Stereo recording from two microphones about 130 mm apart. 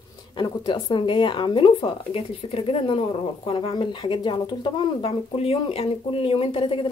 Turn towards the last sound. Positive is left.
turn(degrees=40)  # may be behind; listen again after turning